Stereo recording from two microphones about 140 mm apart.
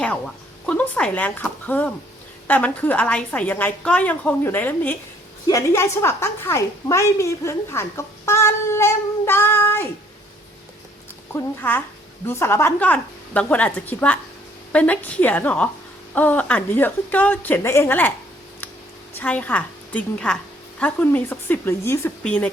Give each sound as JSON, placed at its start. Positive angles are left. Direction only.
{"t": 0.6, "sound": "a woman's voice", "side_deg": 10}
{"t": 11.3, "sound": "a woman's voice", "side_deg": 15}
{"t": 19.2, "sound": "a woman's voice", "side_deg": 10}